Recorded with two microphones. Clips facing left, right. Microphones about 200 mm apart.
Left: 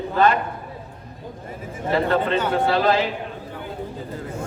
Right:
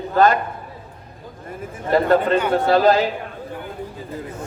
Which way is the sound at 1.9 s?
45° right (ahead or behind).